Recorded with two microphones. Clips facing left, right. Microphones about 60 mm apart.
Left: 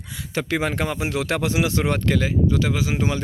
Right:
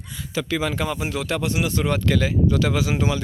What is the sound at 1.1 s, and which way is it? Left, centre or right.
Speech, left.